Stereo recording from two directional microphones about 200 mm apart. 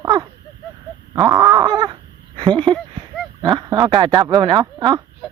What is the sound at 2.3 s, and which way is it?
Speech, 25° right (ahead or behind).